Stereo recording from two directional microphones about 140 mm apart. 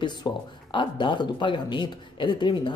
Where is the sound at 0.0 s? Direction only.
35° left (ahead or behind).